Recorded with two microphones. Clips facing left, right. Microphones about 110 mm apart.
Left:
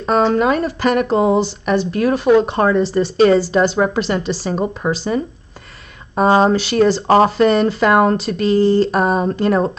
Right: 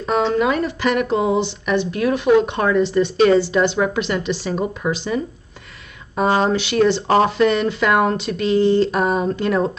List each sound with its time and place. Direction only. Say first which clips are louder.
0.3 s speech: left 3 dB; 40° left (ahead or behind)